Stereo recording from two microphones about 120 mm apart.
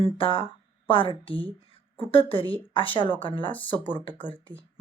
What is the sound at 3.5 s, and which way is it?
Speech, 15° left (ahead or behind).